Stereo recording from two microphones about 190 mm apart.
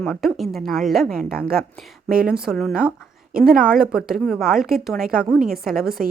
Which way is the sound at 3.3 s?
50° right (ahead or behind).